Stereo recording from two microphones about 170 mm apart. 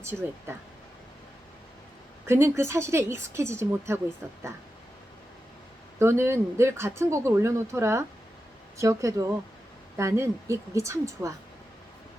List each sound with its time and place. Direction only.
0.1 s speech: 5° right (ahead or behind)
2.2 s a woman's voice: 15° right (ahead or behind)
6.0 s a woman's voice: 15° right (ahead or behind)